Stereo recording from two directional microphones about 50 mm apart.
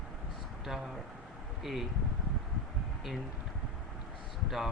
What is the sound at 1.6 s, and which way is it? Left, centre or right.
Speech, centre.